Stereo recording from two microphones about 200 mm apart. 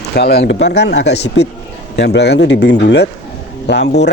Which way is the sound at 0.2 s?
55° left (ahead or behind).